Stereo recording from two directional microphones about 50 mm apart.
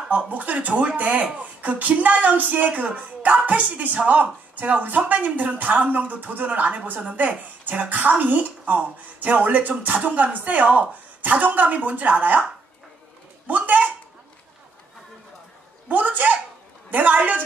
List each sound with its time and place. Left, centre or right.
0.1 s speech: right
13.5 s speech: right
15.9 s a sound: right
16.9 s speech: right